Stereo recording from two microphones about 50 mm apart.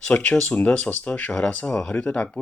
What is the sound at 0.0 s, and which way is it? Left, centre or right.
Speech, left.